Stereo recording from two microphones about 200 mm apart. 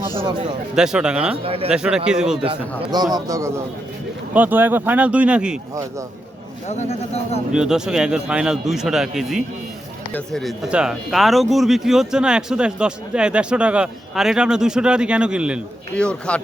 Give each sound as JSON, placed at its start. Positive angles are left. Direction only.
{"t": 0.8, "sound": "speech", "side_deg": -5}
{"t": 1.5, "sound": "a man's voice", "side_deg": -30}
{"t": 1.7, "sound": "speech", "side_deg": -5}
{"t": 2.4, "sound": "a man's voice", "side_deg": -25}
{"t": 6.7, "sound": "speech", "side_deg": 35}
{"t": 7.5, "sound": "speech", "side_deg": -5}
{"t": 16.0, "sound": "speech", "side_deg": 5}